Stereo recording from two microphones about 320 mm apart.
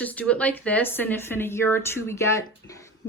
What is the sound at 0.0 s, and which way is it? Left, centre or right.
Speech, centre.